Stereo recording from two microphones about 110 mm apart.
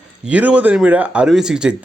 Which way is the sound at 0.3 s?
10° right (ahead or behind).